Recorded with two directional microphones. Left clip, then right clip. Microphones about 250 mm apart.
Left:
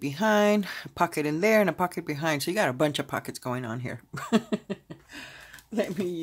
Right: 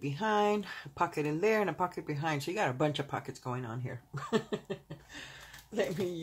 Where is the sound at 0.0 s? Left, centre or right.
Left.